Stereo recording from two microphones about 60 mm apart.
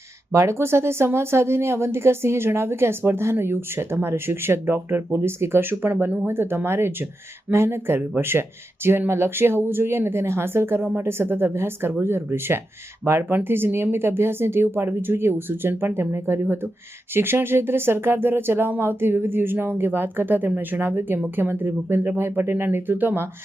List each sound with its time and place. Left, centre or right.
0.3 s speech: right